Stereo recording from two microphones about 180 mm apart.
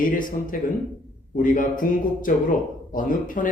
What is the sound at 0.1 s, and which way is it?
Speech, 50° left (ahead or behind).